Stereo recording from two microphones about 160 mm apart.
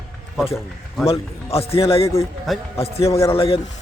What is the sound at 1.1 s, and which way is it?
A man's voice, 40° left (ahead or behind).